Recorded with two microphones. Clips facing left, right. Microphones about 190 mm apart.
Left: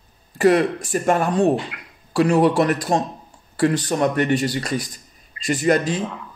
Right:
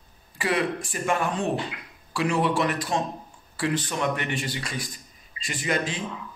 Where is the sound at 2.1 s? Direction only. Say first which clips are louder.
Left 8 dB; 40° left (ahead or behind).